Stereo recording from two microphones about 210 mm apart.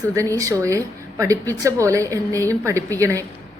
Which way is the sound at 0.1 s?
15° right (ahead or behind).